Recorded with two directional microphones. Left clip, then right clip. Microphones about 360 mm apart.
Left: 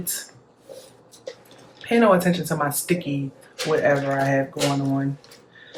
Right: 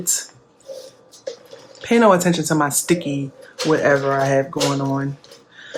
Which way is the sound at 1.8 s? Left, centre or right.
Centre.